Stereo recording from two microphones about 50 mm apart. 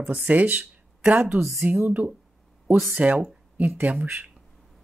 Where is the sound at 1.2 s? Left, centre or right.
Right.